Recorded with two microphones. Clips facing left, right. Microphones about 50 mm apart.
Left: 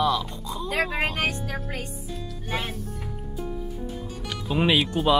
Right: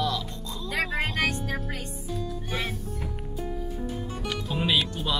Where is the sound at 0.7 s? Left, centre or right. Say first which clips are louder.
Left 3 dB; left.